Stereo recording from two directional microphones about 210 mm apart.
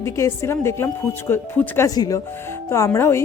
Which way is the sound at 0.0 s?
15° left (ahead or behind).